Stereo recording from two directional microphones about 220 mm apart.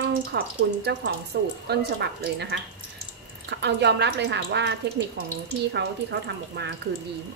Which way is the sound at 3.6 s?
50° right (ahead or behind).